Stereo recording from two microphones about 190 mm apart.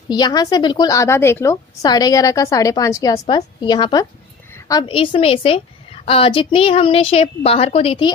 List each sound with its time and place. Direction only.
0.1 s a woman's voice: 20° left (ahead or behind)